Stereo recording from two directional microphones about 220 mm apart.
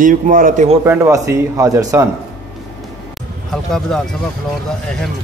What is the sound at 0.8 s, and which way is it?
Speech, 10° right (ahead or behind).